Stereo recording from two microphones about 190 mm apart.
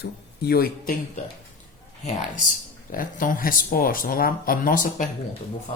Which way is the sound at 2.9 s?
45° left (ahead or behind).